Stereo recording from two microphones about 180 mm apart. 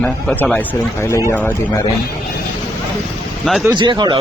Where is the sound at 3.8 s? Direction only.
25° right (ahead or behind).